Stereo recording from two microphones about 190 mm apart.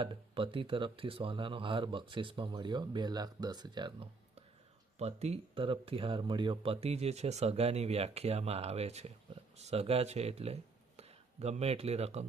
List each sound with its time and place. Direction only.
0.0 s speech: 25° right (ahead or behind)